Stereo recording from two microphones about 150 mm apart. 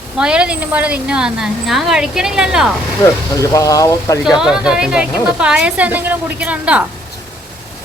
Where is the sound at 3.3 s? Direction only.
20° left (ahead or behind).